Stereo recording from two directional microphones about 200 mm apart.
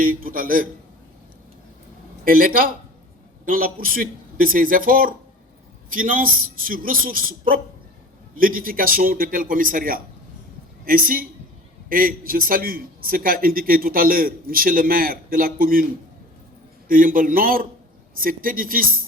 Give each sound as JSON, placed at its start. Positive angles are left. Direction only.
{"t": 0.0, "sound": "a man's voice", "side_deg": -45}
{"t": 2.2, "sound": "a man's voice", "side_deg": -45}
{"t": 16.9, "sound": "a man's voice", "side_deg": -45}